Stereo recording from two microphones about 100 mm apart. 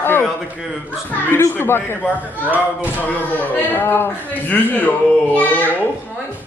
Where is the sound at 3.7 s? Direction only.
20° left (ahead or behind).